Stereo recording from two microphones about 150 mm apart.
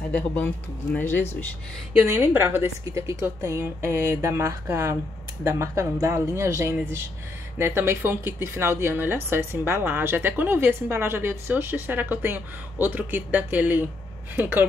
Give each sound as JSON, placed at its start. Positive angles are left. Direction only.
{"t": 0.9, "sound": "speech", "side_deg": 15}
{"t": 2.0, "sound": "speech", "side_deg": -15}